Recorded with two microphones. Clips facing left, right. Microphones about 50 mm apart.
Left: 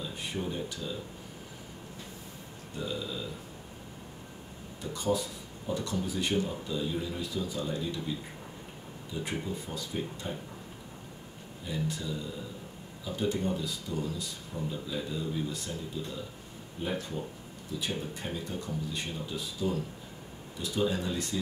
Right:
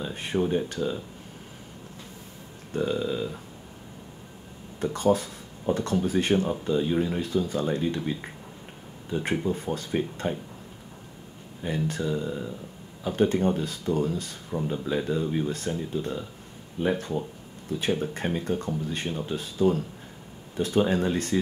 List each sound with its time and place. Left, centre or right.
0.0 s speech: right
2.7 s speech: right
4.7 s speech: right
11.6 s speech: right